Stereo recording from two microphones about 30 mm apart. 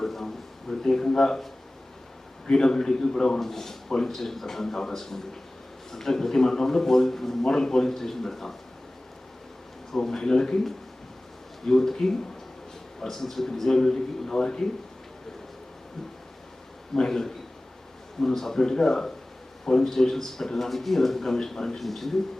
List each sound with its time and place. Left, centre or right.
0.0 s a sound: centre
0.7 s a man's voice: centre
2.5 s a man's voice: left
9.9 s a man's voice: centre
16.9 s a man's voice: centre